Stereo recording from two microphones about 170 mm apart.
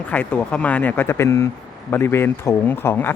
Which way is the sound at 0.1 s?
10° left (ahead or behind).